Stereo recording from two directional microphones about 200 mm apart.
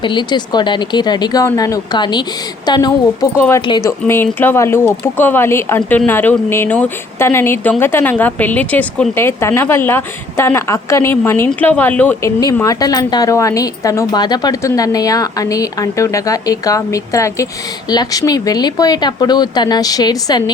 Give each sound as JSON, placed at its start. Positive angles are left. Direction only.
{"t": 0.0, "sound": "a woman's voice", "side_deg": 25}